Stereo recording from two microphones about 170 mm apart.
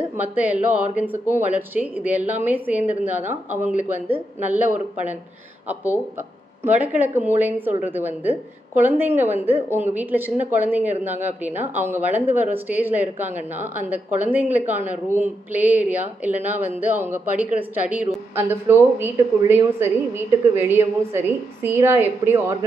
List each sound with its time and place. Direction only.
0.2 s a woman's voice: 10° right (ahead or behind)
4.5 s a woman's voice: 10° right (ahead or behind)
6.6 s a woman's voice: 10° right (ahead or behind)